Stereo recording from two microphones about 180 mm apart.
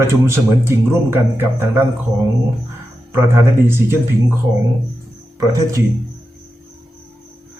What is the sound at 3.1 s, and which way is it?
A man's voice, 15° right (ahead or behind).